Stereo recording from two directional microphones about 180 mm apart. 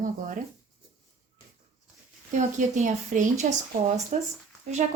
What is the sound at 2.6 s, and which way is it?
Speech, 45° right (ahead or behind).